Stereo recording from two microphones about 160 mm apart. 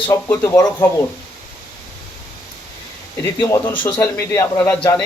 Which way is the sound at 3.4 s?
15° left (ahead or behind).